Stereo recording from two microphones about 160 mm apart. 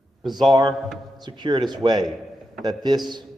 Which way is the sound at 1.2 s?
30° right (ahead or behind).